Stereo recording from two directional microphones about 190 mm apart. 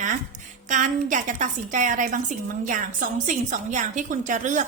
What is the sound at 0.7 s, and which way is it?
A woman's voice, 40° right (ahead or behind).